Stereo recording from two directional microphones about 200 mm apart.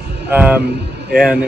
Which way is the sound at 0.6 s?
55° right (ahead or behind).